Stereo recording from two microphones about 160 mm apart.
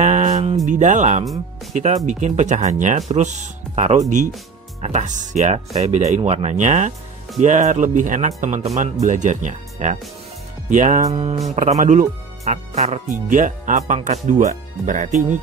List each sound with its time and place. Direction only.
0.0 s a sound: 45° right (ahead or behind)
0.7 s speech: 50° right (ahead or behind)
13.1 s speech: 55° right (ahead or behind)